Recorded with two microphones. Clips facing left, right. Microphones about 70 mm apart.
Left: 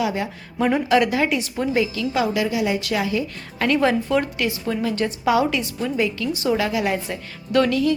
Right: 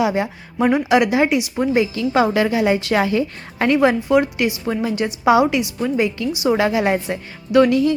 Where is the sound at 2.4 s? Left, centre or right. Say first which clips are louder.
Right 5 dB; right.